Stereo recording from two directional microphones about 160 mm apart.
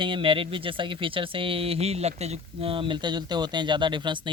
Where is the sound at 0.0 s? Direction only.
35° right (ahead or behind).